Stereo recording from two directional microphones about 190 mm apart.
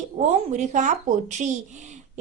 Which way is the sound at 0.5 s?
40° right (ahead or behind).